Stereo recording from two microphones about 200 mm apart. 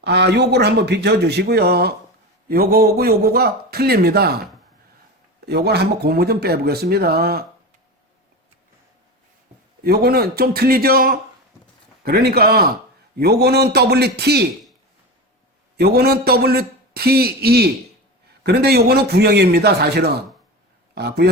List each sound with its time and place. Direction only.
0.0 s speech: 55° right (ahead or behind)
5.5 s speech: 55° right (ahead or behind)
9.8 s speech: 50° right (ahead or behind)
15.8 s speech: 50° right (ahead or behind)